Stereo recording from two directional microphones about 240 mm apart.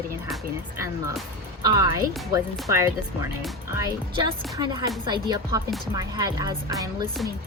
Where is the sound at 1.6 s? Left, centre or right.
Centre.